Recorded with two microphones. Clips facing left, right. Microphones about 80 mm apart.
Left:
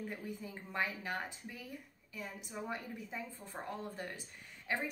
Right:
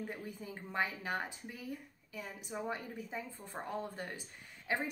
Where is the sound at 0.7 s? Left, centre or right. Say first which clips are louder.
Right 2 dB; centre.